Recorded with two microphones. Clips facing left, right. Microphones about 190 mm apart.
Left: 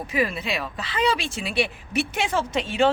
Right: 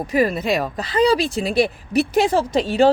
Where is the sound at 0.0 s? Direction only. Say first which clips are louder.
Right 7 dB; 40° right (ahead or behind).